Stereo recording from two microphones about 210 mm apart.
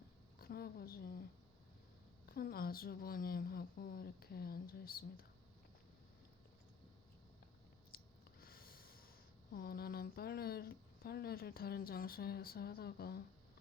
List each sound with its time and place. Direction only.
0.3 s a woman's voice: 45° left (ahead or behind)
2.3 s speech: 45° left (ahead or behind)
7.9 s a sound: 45° left (ahead or behind)
9.5 s speech: 45° left (ahead or behind)